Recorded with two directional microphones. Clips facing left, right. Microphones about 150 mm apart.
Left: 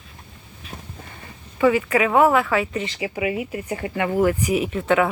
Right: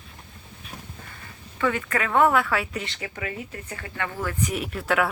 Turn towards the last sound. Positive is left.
turn(degrees=0)  # may be behind; listen again after turning